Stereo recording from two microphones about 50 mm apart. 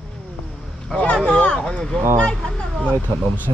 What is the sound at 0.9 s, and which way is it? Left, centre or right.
Speech, left.